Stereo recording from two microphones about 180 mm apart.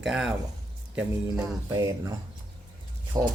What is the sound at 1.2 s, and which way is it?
Speech, 20° right (ahead or behind).